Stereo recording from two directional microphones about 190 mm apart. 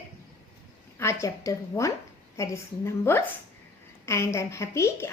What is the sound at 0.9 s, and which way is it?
Speech, 15° left (ahead or behind).